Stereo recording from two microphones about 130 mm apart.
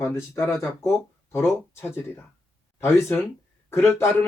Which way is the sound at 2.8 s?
20° left (ahead or behind).